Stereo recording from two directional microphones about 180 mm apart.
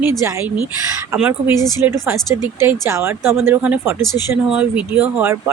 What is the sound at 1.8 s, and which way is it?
Speech, 15° right (ahead or behind).